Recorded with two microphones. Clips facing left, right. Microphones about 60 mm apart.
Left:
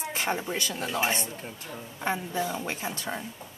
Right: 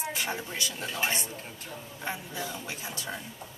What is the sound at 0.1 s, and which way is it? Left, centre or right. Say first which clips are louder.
Speech: left 4 dB; left.